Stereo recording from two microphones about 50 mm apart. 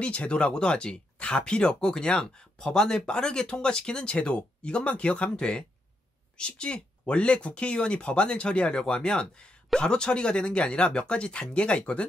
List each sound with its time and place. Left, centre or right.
0.0 s speech: left